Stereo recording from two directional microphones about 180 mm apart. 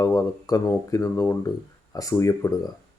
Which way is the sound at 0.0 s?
20° left (ahead or behind).